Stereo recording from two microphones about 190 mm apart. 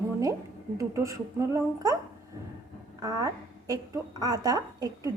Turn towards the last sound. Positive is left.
turn(degrees=-20)  # may be behind; listen again after turning